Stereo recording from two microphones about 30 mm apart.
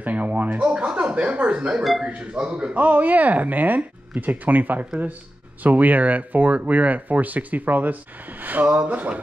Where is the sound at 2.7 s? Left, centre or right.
Right.